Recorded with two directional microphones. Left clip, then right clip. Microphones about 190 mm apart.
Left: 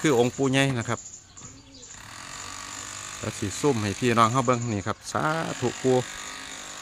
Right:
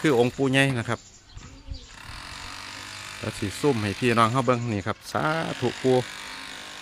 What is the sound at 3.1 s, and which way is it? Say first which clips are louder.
Speech: right 1 dB; 5° right (ahead or behind).